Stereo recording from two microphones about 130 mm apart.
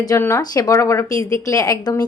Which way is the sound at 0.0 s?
25° left (ahead or behind).